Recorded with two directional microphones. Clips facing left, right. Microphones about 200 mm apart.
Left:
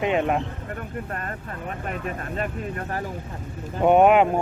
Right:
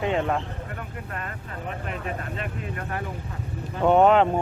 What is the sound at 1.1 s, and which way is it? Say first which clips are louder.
Speech: left 3 dB; 45° left (ahead or behind).